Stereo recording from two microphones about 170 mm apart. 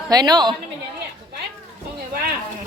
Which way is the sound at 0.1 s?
25° right (ahead or behind).